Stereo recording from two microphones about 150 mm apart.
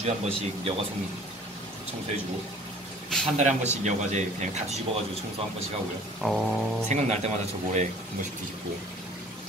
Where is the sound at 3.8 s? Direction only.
50° right (ahead or behind).